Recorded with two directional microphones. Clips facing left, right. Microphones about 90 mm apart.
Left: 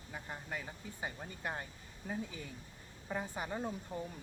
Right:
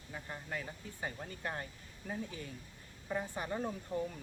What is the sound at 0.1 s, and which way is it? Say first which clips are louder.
Speech: right 1 dB; 15° left (ahead or behind).